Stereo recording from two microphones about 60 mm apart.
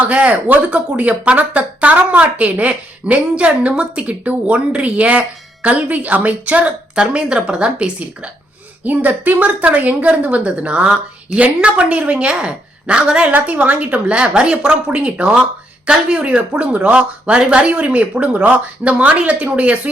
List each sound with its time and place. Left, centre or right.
0.0 s a woman's voice: right